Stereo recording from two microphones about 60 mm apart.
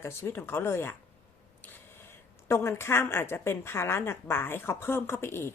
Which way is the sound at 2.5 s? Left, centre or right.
Left.